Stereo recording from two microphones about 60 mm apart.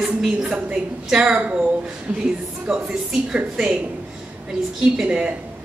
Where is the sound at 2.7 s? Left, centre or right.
Centre.